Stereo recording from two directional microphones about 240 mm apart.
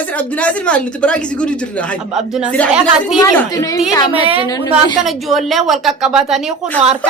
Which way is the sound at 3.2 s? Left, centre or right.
Centre.